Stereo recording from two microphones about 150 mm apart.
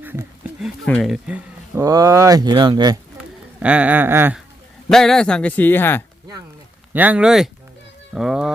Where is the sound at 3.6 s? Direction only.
10° right (ahead or behind).